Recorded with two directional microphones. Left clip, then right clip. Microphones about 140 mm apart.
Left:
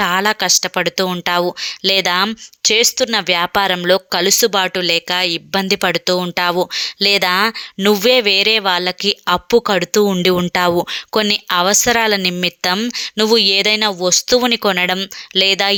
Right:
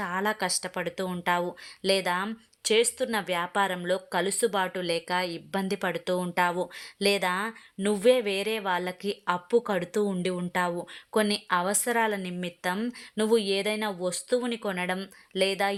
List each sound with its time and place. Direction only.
0.0 s speech: 30° left (ahead or behind)
0.8 s speech: 35° left (ahead or behind)
8.1 s speech: 30° left (ahead or behind); by 10.8 s 50° left (ahead or behind)
11.1 s speech: 35° left (ahead or behind)